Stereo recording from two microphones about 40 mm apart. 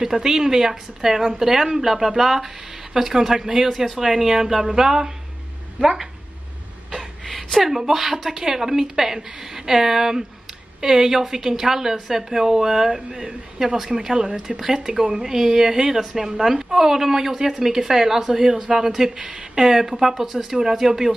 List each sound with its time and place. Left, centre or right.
0.0 s a woman's voice: centre
7.2 s a woman's voice: centre